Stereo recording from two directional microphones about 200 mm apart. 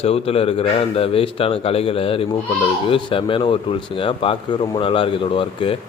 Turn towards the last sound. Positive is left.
turn(degrees=25)  # may be behind; listen again after turning